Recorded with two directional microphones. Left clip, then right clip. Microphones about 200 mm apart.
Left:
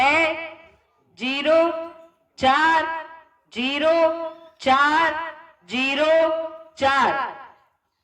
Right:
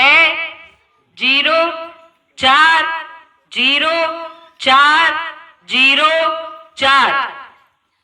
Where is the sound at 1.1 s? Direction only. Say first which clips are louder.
Right 6 dB; 40° left (ahead or behind).